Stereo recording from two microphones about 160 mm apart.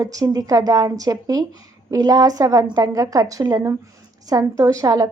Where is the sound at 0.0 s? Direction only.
20° right (ahead or behind).